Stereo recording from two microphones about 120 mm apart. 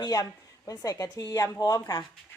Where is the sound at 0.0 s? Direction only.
30° left (ahead or behind).